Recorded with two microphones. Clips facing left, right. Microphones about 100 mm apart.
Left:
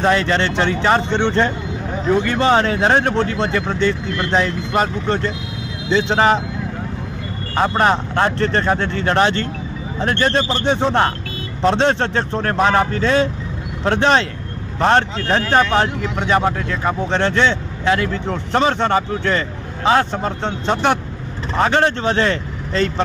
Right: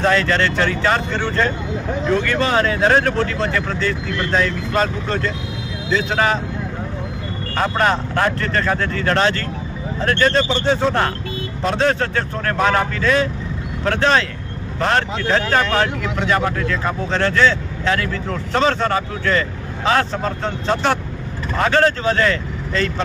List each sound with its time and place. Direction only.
0.0 s speech: 20° left (ahead or behind)
7.5 s speech: 20° left (ahead or behind)